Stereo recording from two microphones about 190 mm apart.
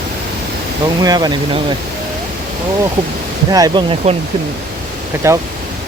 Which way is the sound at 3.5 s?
20° right (ahead or behind).